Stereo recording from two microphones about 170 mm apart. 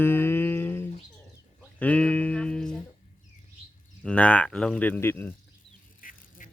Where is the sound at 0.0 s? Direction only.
15° left (ahead or behind).